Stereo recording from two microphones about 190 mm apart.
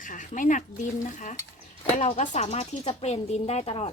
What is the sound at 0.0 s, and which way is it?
Speech, 45° left (ahead or behind).